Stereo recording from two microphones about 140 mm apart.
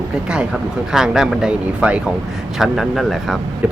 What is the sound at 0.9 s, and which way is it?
Speech, 5° right (ahead or behind).